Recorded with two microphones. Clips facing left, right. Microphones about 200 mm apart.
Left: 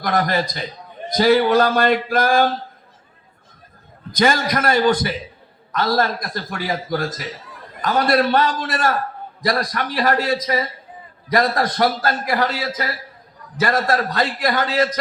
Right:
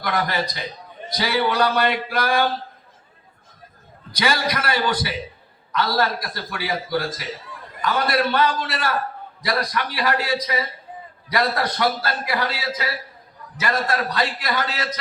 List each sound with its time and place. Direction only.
0.0 s a man's voice: 45° left (ahead or behind)
4.1 s a man's voice: 45° left (ahead or behind)